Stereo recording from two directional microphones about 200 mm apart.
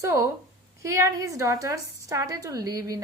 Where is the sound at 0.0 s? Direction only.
15° right (ahead or behind).